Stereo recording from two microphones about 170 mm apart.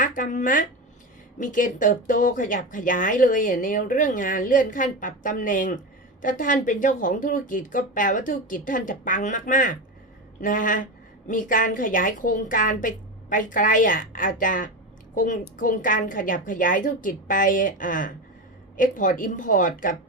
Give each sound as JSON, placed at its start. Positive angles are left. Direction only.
{"t": 0.0, "sound": "speech", "side_deg": 50}